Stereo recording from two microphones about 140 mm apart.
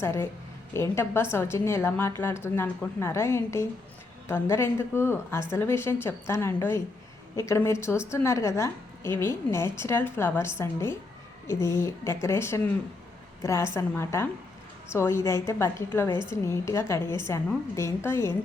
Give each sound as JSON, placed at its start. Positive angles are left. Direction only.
{"t": 0.0, "sound": "a woman's voice", "side_deg": 20}